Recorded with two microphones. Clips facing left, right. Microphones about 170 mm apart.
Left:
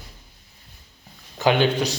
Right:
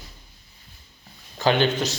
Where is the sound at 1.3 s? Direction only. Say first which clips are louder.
Left 1 dB; 10° left (ahead or behind).